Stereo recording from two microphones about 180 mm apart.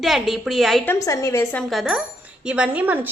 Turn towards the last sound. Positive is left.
turn(degrees=-10)  # may be behind; listen again after turning